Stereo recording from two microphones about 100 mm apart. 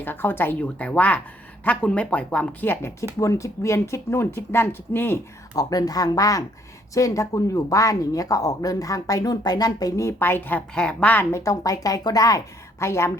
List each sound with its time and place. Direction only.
0.0 s speech: 20° left (ahead or behind)
5.5 s speech: 40° left (ahead or behind); by 11.3 s 15° left (ahead or behind)
11.3 s speech: 30° left (ahead or behind)
12.8 s speech: 25° left (ahead or behind)